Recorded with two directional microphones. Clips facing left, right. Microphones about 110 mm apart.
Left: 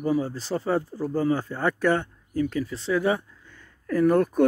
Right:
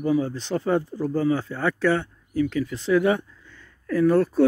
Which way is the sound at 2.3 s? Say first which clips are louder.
Right 2 dB; 40° left (ahead or behind).